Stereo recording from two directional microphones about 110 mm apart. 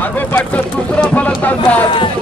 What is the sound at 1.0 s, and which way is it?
Speech, 10° left (ahead or behind).